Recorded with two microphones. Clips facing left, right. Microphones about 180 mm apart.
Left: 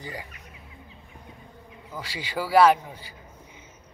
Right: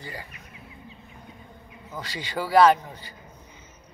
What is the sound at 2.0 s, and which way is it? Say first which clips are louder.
Speech: even; 5° left (ahead or behind).